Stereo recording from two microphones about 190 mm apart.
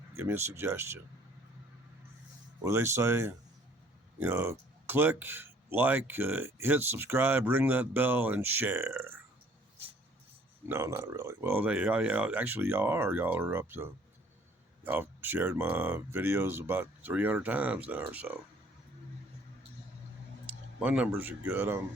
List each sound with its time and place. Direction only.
0.2 s speech: 15° right (ahead or behind)
2.6 s speech: 15° right (ahead or behind)
10.7 s speech: 15° right (ahead or behind)
20.5 s speech: 5° right (ahead or behind)